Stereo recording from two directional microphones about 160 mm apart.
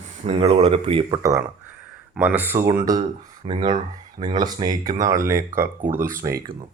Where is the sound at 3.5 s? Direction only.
35° right (ahead or behind).